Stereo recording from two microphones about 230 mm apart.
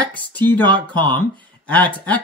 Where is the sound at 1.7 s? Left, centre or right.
Centre.